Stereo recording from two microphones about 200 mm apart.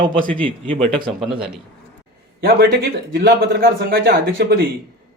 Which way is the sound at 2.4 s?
50° right (ahead or behind).